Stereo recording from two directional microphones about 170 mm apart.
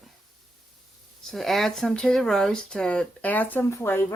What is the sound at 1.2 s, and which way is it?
Speech, centre (ahead or behind).